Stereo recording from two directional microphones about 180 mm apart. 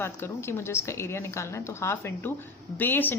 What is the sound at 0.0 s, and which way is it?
A woman's voice, 15° left (ahead or behind).